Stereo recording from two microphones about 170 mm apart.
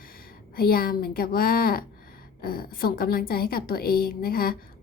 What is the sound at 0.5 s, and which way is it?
A woman's voice, 60° left (ahead or behind).